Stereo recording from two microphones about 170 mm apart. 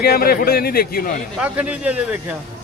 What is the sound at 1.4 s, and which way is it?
Speech, 5° right (ahead or behind).